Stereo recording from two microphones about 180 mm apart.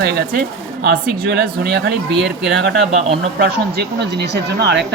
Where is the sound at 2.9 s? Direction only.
35° right (ahead or behind).